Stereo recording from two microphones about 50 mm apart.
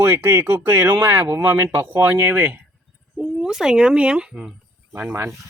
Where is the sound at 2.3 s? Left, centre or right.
Right.